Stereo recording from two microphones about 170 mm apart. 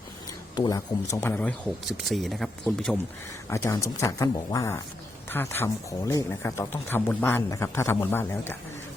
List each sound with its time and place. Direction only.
0.5 s a man's voice: 20° left (ahead or behind)
1.9 s speech: centre (ahead or behind)
3.5 s a man's voice: 15° left (ahead or behind)